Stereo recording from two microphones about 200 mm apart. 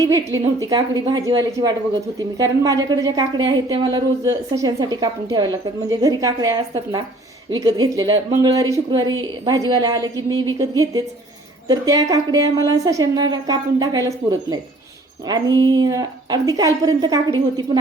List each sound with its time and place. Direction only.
0.0 s a woman's voice: 15° right (ahead or behind)